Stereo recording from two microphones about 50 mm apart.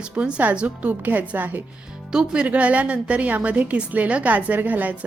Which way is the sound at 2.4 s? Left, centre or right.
Right.